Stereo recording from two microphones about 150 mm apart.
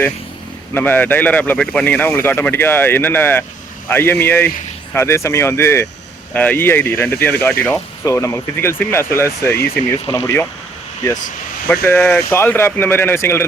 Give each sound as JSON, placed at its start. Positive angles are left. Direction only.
{"t": 0.7, "sound": "speech", "side_deg": 15}
{"t": 11.7, "sound": "speech", "side_deg": 15}